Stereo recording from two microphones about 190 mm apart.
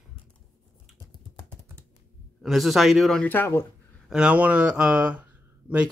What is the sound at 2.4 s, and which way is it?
Speech, centre (ahead or behind).